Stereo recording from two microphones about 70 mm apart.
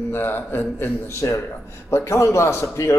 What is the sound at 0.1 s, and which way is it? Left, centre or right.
Speech, left.